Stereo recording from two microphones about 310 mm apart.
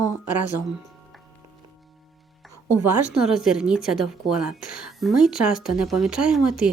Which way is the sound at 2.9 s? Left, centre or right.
Centre.